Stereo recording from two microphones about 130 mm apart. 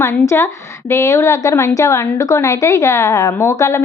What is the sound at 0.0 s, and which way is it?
A woman's voice, 25° left (ahead or behind).